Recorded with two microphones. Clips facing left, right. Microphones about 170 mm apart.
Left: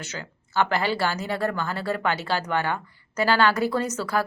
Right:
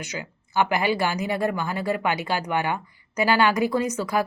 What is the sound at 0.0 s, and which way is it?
Speech, 15° right (ahead or behind).